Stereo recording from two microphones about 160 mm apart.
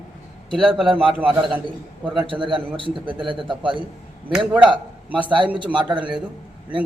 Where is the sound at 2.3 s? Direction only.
30° right (ahead or behind).